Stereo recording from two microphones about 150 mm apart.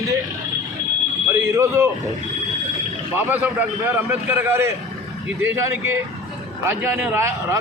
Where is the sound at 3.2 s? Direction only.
10° right (ahead or behind).